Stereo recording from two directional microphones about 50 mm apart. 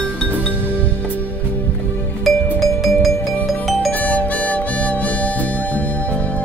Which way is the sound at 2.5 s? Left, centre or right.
Centre.